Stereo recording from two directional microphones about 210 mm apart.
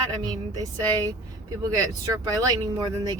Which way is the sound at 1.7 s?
15° right (ahead or behind).